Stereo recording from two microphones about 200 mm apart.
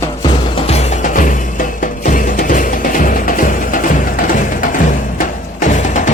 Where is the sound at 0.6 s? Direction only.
35° left (ahead or behind).